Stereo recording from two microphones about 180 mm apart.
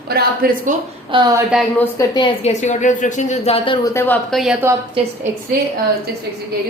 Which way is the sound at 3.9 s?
15° left (ahead or behind).